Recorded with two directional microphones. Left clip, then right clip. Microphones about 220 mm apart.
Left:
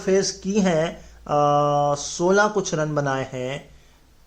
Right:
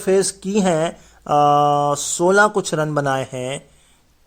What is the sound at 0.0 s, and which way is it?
Speech, 50° right (ahead or behind).